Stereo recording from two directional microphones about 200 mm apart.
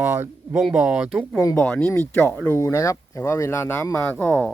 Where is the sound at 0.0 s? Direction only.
10° right (ahead or behind).